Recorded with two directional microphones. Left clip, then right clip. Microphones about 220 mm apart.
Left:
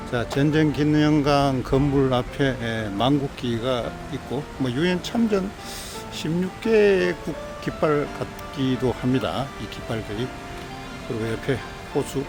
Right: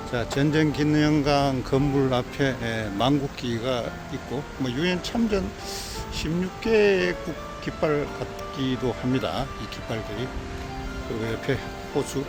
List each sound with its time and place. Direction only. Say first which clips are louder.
0.1 s speech: left 2 dB; 20° left (ahead or behind)
6.6 s speech: left 2 dB; 20° left (ahead or behind)
11.4 s speech: left 1 dB; 15° left (ahead or behind)